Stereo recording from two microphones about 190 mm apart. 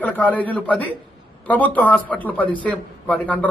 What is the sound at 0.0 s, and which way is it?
A man's voice, 10° left (ahead or behind).